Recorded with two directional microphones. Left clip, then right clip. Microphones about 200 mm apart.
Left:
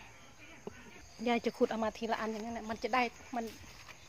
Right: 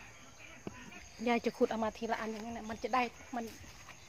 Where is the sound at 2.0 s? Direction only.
30° left (ahead or behind).